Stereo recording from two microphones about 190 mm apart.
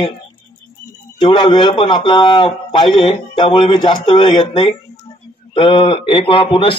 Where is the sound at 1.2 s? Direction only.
25° left (ahead or behind).